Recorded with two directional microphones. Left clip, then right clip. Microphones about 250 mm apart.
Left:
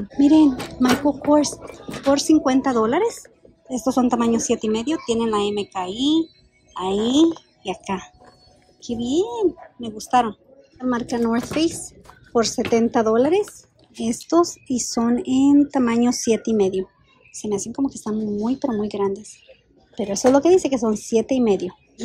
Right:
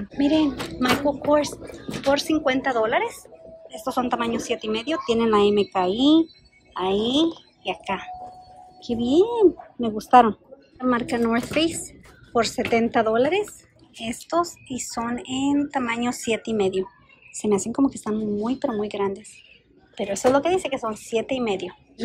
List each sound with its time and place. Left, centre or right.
0.2 s a woman's voice: centre